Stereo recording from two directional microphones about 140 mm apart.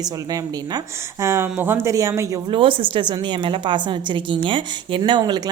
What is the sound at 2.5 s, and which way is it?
A woman's voice, 40° right (ahead or behind).